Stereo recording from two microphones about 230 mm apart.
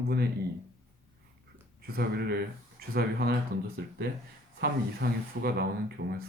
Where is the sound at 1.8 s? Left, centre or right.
Right.